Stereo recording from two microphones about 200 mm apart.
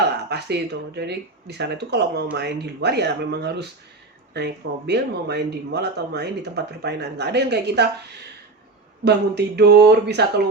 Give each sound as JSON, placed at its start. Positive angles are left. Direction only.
{"t": 0.3, "sound": "speech", "side_deg": -55}
{"t": 9.0, "sound": "speech", "side_deg": -55}